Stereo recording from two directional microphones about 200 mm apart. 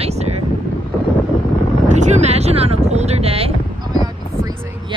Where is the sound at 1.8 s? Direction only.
35° right (ahead or behind).